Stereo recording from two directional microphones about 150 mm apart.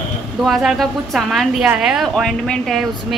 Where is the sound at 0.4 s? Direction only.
Centre (ahead or behind).